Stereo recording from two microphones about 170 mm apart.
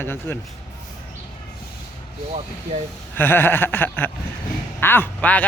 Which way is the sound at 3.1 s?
10° left (ahead or behind).